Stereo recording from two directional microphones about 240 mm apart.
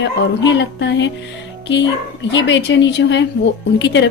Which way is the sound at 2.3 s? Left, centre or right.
Left.